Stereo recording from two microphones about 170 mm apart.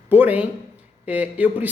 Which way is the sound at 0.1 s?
10° right (ahead or behind).